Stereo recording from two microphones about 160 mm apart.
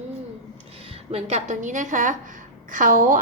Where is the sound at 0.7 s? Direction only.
35° right (ahead or behind); by 3.2 s 60° right (ahead or behind).